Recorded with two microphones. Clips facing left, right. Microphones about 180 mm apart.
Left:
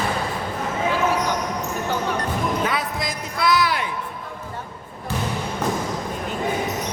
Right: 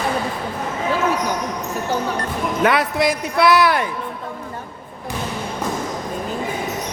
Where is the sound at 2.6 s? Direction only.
70° right (ahead or behind).